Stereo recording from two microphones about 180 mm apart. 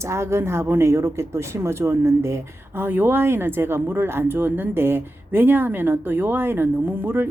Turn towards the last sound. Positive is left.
turn(degrees=-10)  # may be behind; listen again after turning